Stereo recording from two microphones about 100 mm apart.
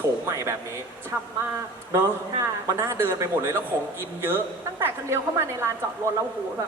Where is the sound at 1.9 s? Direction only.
30° right (ahead or behind).